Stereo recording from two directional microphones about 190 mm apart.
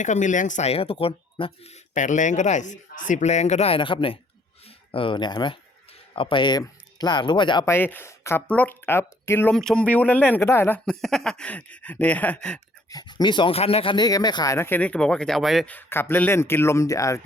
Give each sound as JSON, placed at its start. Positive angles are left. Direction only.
{"t": 0.0, "sound": "speech", "side_deg": 40}
{"t": 1.9, "sound": "speech", "side_deg": 40}
{"t": 7.7, "sound": "speech", "side_deg": 10}
{"t": 12.9, "sound": "speech", "side_deg": 20}